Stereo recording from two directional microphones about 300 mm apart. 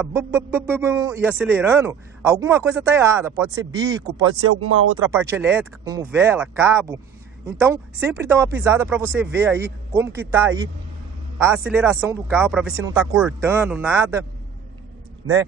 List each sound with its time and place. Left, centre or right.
0.0 s speech: centre
4.4 s speech: right
5.0 s speech: centre